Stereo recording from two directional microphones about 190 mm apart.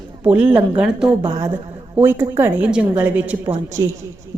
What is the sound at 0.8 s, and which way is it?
A woman's voice, 5° right (ahead or behind).